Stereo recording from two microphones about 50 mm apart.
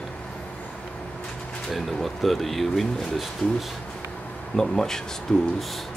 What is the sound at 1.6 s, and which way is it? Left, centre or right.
Speech, centre.